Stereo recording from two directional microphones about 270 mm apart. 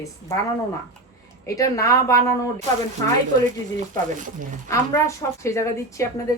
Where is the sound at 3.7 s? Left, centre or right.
Right.